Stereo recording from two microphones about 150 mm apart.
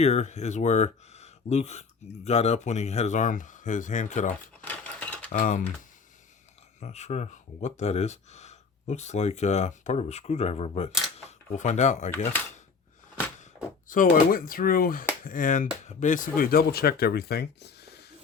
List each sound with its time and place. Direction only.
0.0 s speech: 50° left (ahead or behind)
4.6 s a sound: 10° left (ahead or behind)
5.3 s speech: 60° left (ahead or behind)
6.7 s speech: 50° left (ahead or behind)
13.8 s speech: 65° left (ahead or behind); by 18.0 s 90° left